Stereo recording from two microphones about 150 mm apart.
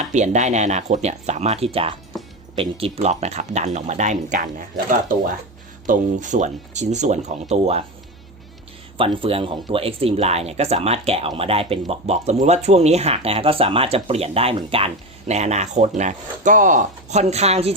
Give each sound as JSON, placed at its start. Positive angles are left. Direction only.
{"t": 0.0, "sound": "speech", "side_deg": -50}
{"t": 9.0, "sound": "speech", "side_deg": -35}